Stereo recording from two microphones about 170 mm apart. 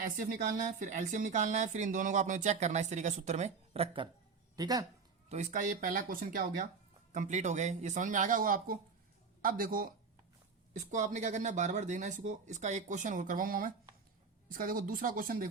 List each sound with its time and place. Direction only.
0.0 s speech: 55° right (ahead or behind); by 4.1 s 35° right (ahead or behind)
4.5 s speech: 20° right (ahead or behind)
5.3 s speech: 40° right (ahead or behind)
10.8 s speech: 45° right (ahead or behind)